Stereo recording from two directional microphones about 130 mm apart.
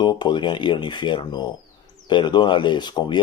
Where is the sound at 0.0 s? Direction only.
35° left (ahead or behind).